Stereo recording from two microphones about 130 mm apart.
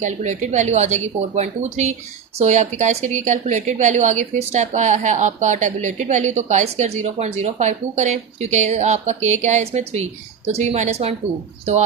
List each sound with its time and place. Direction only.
0.0 s a woman's voice: 65° right (ahead or behind)